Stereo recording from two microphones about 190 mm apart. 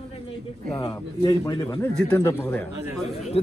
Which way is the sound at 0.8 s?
20° left (ahead or behind).